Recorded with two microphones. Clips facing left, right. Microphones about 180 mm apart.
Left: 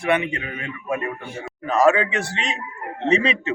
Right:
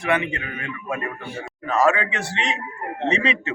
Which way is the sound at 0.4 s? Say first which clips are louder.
Left 1 dB; 20° left (ahead or behind).